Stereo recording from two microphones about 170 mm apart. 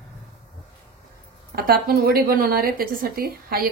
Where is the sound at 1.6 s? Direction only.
60° right (ahead or behind).